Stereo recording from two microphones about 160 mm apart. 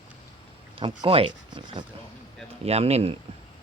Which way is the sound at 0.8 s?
35° right (ahead or behind).